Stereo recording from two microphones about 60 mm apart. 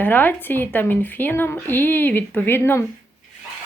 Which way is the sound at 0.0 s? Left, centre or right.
Left.